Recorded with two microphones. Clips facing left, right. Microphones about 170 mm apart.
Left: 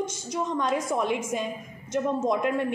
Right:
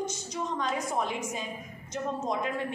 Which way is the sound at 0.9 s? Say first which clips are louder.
Left 5 dB; 65° left (ahead or behind).